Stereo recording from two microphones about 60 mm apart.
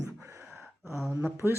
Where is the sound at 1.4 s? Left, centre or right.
Right.